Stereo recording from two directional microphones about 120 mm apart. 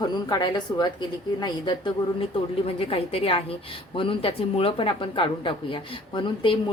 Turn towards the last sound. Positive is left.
turn(degrees=45)  # may be behind; listen again after turning